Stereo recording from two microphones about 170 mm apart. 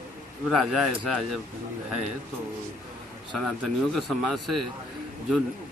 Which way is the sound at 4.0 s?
Centre (ahead or behind).